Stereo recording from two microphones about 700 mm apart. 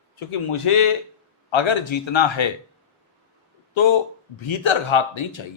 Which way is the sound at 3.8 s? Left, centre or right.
Left.